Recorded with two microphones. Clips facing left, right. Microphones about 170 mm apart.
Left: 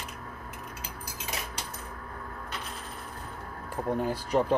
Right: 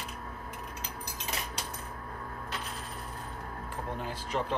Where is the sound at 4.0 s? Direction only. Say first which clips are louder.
Left 7 dB; 45° left (ahead or behind).